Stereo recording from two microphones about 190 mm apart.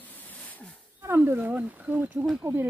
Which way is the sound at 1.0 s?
10° right (ahead or behind).